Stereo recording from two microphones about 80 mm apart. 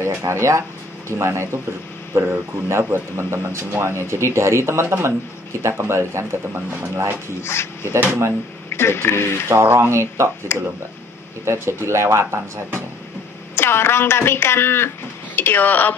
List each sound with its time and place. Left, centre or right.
0.0 s speech: right
7.4 s speech: left
8.0 s speech: right
8.6 s speech: left
9.5 s speech: right
11.4 s speech: right
13.6 s speech: left